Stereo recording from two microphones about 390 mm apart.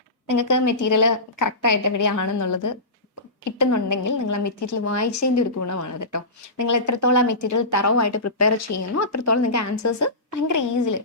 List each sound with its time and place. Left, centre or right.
0.3 s a woman's voice: left